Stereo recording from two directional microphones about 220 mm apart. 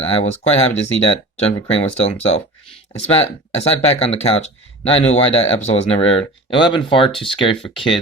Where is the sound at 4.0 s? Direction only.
25° left (ahead or behind).